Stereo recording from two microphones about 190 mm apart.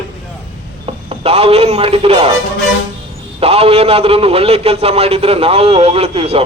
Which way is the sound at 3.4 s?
30° right (ahead or behind).